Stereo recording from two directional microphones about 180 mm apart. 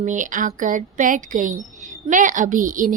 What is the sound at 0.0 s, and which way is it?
Speech, 45° right (ahead or behind).